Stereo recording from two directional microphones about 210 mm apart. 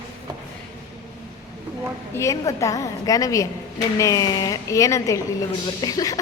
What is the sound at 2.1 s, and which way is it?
A woman's voice, 15° left (ahead or behind).